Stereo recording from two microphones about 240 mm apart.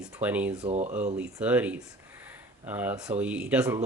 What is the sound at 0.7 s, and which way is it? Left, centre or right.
Speech, right.